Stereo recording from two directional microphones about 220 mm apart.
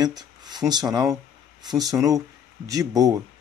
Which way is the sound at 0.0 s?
15° right (ahead or behind).